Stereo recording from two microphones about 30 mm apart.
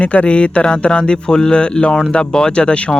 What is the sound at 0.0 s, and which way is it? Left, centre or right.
Speech, left.